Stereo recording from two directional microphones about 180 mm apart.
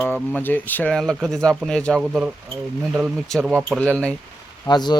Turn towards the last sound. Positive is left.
turn(degrees=25)  # may be behind; listen again after turning